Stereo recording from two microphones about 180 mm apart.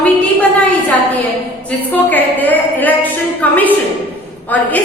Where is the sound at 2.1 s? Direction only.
10° left (ahead or behind).